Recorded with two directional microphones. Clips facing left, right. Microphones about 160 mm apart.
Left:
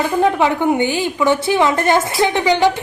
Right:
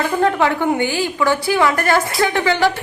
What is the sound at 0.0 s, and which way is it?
A woman's voice, 15° left (ahead or behind).